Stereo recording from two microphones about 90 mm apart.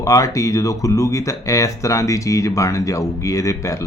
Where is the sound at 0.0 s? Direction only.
40° left (ahead or behind).